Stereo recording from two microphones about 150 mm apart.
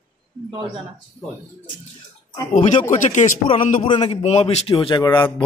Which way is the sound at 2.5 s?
55° left (ahead or behind).